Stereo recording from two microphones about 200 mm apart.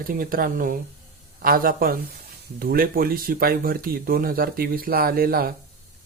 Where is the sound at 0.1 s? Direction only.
45° right (ahead or behind).